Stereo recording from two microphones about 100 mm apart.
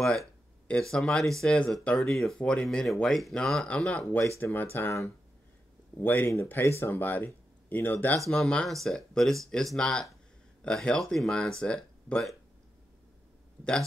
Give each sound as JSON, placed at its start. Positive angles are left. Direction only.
{"t": 0.0, "sound": "speech", "side_deg": 5}
{"t": 4.4, "sound": "speech", "side_deg": 20}
{"t": 5.9, "sound": "speech", "side_deg": 20}
{"t": 8.2, "sound": "speech", "side_deg": 5}